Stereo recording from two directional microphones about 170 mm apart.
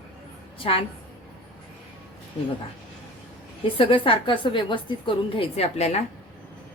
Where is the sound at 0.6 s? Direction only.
35° left (ahead or behind).